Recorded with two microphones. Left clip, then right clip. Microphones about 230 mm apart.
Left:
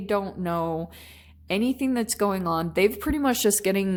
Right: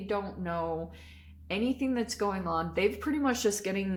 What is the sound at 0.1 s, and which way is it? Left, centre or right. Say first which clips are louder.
Speech: left 7 dB; left.